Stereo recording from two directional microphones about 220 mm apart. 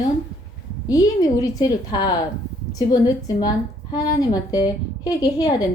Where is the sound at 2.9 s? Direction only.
20° left (ahead or behind).